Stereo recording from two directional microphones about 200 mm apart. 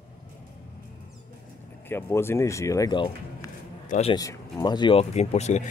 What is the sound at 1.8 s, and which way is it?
Speech, 10° left (ahead or behind).